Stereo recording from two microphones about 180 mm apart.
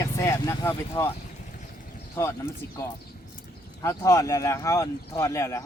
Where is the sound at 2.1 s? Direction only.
15° left (ahead or behind).